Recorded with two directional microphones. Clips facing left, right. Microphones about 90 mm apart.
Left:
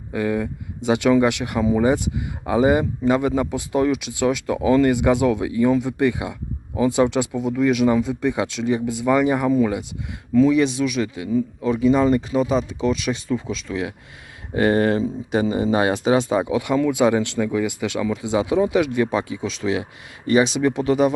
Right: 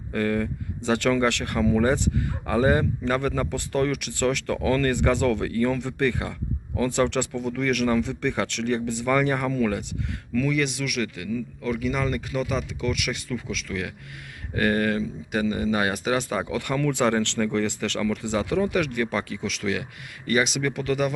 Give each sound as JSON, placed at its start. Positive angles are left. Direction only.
{"t": 0.1, "sound": "speech", "side_deg": 10}